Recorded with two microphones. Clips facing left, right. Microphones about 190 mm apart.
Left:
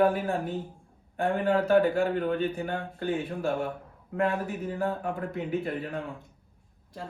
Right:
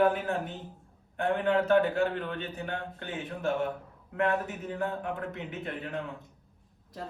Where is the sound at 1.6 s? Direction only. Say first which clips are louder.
Left 3 dB; 45° left (ahead or behind).